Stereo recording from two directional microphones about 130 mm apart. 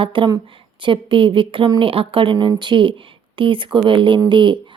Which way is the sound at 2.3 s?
30° right (ahead or behind).